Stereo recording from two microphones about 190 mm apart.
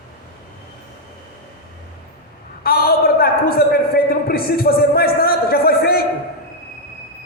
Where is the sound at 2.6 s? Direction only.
50° left (ahead or behind).